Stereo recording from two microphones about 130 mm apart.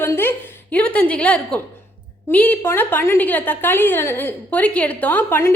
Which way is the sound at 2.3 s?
10° left (ahead or behind).